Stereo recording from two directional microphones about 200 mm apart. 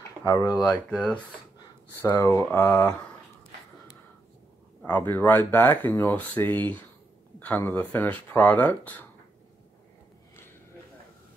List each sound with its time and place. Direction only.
0.2 s speech: 20° left (ahead or behind)
0.7 s speech: 5° left (ahead or behind)
4.8 s speech: 10° left (ahead or behind)